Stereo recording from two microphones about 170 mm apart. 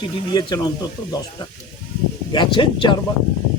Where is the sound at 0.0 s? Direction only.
30° left (ahead or behind).